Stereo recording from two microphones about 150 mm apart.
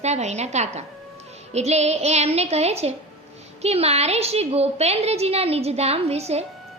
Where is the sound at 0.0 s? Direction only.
50° right (ahead or behind).